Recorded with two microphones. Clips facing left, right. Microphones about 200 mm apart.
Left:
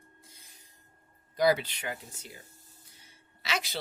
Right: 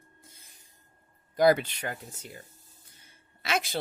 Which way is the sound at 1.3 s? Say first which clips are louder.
Right 4 dB; 50° right (ahead or behind).